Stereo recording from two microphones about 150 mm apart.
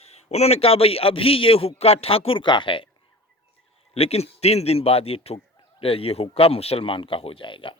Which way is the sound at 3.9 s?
40° left (ahead or behind).